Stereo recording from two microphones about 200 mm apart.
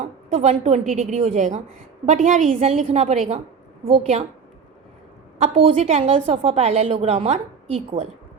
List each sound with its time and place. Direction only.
0.0 s a woman's voice: 35° right (ahead or behind)
5.4 s a woman's voice: 30° right (ahead or behind)